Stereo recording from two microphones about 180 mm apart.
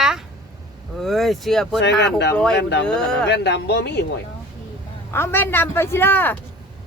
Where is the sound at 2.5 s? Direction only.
70° left (ahead or behind).